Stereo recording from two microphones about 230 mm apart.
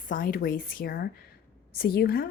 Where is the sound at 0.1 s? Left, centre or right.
Left.